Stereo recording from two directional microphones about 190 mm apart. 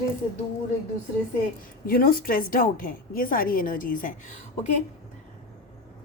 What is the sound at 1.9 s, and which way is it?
A woman's voice, 50° left (ahead or behind).